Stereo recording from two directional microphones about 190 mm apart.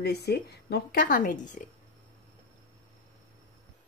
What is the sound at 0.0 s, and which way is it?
Speech, 60° left (ahead or behind).